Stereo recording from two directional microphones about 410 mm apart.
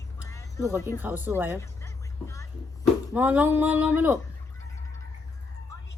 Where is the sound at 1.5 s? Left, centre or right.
Centre.